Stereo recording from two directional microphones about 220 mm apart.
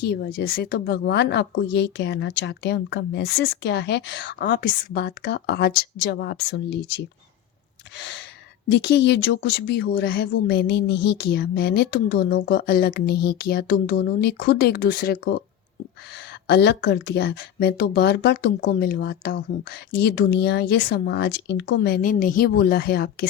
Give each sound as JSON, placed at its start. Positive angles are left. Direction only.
{"t": 0.0, "sound": "a woman's voice", "side_deg": 50}
{"t": 16.5, "sound": "a woman's voice", "side_deg": 50}